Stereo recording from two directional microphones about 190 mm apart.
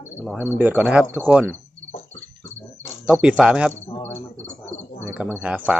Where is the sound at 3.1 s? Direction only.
5° right (ahead or behind).